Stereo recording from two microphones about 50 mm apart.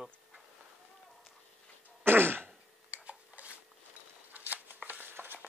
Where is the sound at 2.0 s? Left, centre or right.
Right.